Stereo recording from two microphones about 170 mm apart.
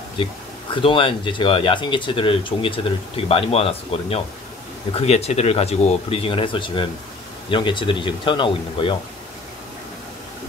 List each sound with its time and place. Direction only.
0.2 s speech: 30° left (ahead or behind)